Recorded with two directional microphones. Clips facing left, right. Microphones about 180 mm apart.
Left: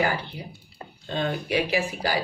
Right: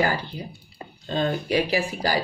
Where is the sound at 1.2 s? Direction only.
35° right (ahead or behind).